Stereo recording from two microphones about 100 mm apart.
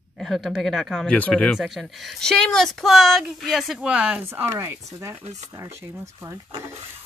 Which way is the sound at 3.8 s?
10° right (ahead or behind).